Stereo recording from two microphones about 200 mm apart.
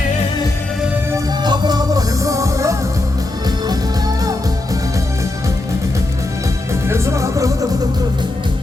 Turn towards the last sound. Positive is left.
turn(degrees=-15)  # may be behind; listen again after turning